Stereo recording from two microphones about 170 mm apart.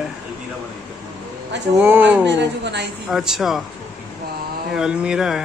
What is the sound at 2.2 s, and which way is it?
Speech, 90° right.